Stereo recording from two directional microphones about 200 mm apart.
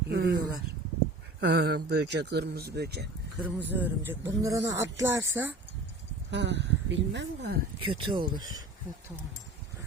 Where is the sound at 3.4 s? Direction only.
10° right (ahead or behind).